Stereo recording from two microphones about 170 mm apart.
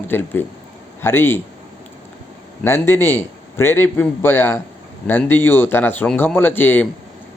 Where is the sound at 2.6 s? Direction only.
15° left (ahead or behind).